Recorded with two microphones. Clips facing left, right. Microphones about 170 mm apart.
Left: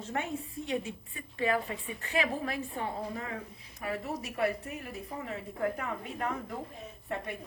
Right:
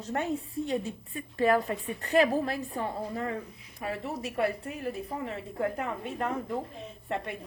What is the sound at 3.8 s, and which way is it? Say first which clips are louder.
A woman's voice: right 2 dB; 30° right (ahead or behind).